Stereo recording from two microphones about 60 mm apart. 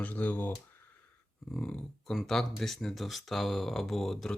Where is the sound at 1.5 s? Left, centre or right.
Centre.